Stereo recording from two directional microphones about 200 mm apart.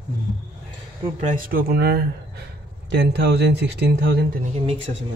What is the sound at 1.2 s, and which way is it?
Speech, 40° right (ahead or behind).